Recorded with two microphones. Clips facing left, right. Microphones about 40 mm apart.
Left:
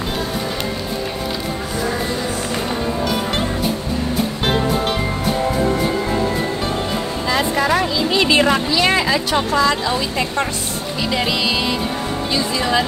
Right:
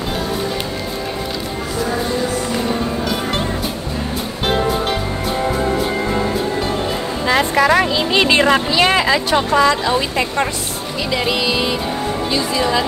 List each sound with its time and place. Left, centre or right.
7.5 s a sound: right
7.9 s speech: right
9.3 s speech: right
10.1 s music: centre
12.3 s speech: centre